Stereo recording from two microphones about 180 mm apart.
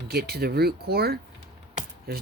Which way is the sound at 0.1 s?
60° right (ahead or behind).